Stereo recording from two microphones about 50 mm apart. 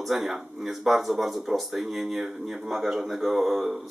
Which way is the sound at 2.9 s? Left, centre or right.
Right.